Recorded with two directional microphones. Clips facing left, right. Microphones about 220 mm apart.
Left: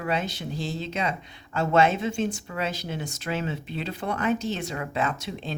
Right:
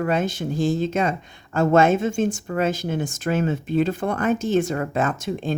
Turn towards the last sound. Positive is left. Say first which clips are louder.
# right 7 dB
turn(degrees=-50)  # may be behind; listen again after turning